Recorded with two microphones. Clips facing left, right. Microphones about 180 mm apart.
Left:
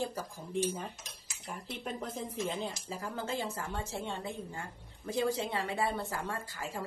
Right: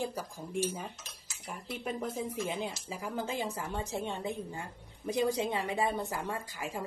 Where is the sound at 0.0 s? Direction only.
10° right (ahead or behind).